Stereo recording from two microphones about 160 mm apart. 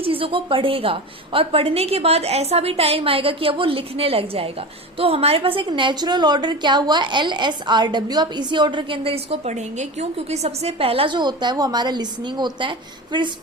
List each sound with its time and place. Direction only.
0.0 s a woman's voice: 35° right (ahead or behind)